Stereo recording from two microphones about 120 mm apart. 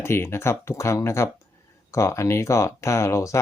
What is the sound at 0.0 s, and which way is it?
Speech, 20° left (ahead or behind).